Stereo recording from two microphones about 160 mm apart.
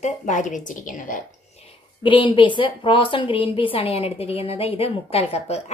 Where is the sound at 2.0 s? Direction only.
30° left (ahead or behind).